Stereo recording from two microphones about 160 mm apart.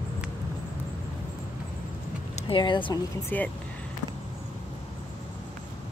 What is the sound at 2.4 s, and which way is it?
Speech, 30° left (ahead or behind).